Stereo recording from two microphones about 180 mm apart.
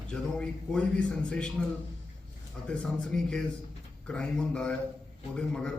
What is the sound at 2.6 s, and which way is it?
A man's voice, 5° left (ahead or behind).